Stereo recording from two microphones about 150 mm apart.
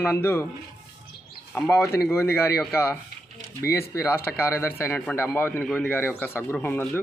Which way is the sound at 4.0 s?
15° left (ahead or behind).